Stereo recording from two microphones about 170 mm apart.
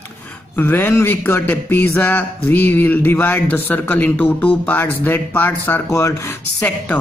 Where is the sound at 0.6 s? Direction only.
10° left (ahead or behind).